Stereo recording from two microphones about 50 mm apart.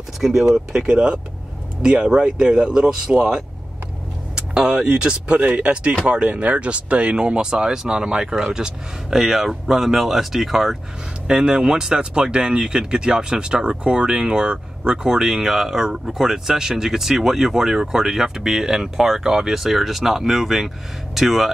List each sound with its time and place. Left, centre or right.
0.2 s speech: centre
11.2 s speech: centre